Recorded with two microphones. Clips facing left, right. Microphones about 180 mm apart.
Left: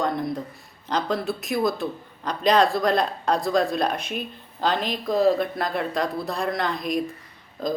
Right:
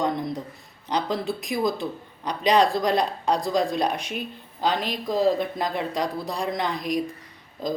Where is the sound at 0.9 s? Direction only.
15° right (ahead or behind).